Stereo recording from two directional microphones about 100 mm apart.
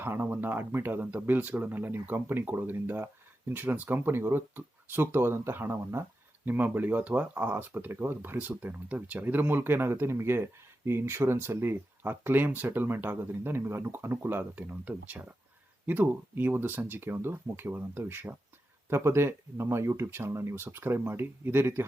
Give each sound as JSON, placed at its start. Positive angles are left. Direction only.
{"t": 0.0, "sound": "speech", "side_deg": -20}